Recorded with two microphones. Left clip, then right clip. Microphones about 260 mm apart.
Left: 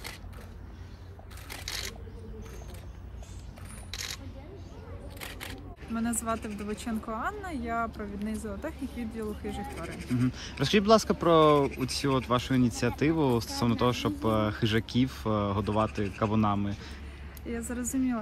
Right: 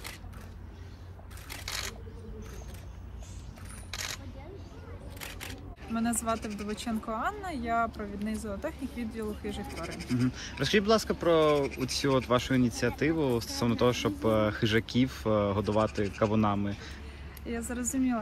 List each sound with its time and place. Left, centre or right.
1.7 s rub: centre
3.9 s single-lens reflex camera: centre
5.2 s a sound: left
5.9 s speech: centre
6.4 s speech: centre
6.7 s speech: centre
9.8 s speech: centre
10.2 s speech: centre
11.8 s speech: centre